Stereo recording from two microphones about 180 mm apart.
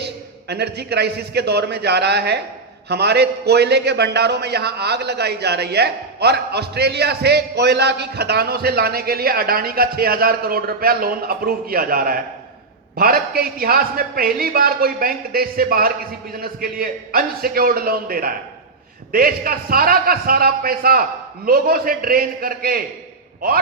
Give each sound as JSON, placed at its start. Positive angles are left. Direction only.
{"t": 0.0, "sound": "a man's voice", "side_deg": -65}